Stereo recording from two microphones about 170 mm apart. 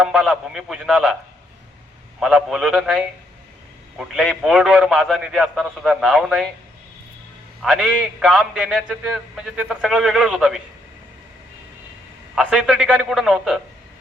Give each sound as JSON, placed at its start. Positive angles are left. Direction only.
{"t": 0.0, "sound": "a man's voice", "side_deg": 0}
{"t": 2.2, "sound": "a man's voice", "side_deg": -5}
{"t": 7.6, "sound": "a man's voice", "side_deg": 0}
{"t": 12.3, "sound": "a man's voice", "side_deg": -5}